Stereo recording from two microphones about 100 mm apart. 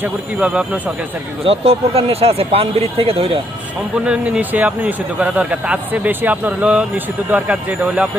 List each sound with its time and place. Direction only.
0.3 s speech: 10° right (ahead or behind)
1.5 s speech: 75° right (ahead or behind)
3.9 s speech: 10° right (ahead or behind)